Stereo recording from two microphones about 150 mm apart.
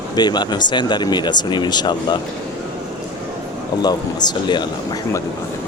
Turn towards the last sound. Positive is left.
turn(degrees=30)  # may be behind; listen again after turning